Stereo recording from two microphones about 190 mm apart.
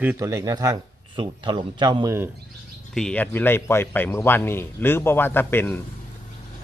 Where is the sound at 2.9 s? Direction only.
5° left (ahead or behind).